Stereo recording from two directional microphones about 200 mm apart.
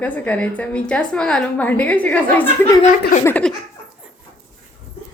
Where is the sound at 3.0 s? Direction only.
40° left (ahead or behind).